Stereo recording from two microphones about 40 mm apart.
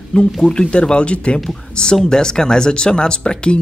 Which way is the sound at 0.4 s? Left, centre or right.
Left.